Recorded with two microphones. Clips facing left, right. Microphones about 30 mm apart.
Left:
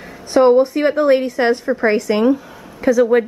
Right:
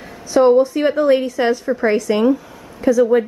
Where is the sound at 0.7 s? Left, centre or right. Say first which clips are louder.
Left 1 dB; left.